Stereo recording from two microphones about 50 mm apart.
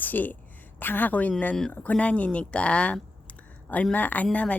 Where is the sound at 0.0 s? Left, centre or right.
Left.